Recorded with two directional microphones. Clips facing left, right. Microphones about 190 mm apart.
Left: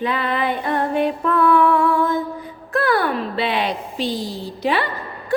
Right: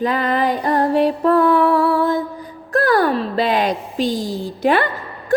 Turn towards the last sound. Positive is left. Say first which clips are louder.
# right 4 dB
turn(degrees=-50)  # may be behind; listen again after turning